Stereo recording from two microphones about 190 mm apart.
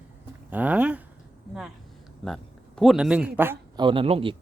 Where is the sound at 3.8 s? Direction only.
25° right (ahead or behind).